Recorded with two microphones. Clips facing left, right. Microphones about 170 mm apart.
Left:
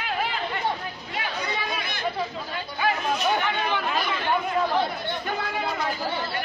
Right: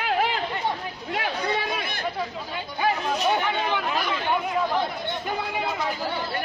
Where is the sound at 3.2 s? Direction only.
10° right (ahead or behind).